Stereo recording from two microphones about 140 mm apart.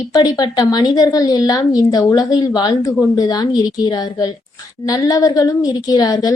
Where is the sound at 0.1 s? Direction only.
30° left (ahead or behind).